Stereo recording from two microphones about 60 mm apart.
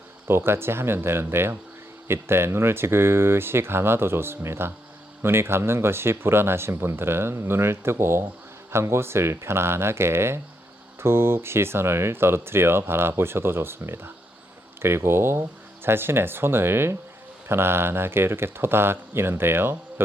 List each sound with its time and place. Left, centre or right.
0.3 s speech: right